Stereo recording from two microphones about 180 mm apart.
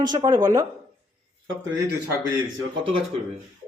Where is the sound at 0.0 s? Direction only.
25° right (ahead or behind).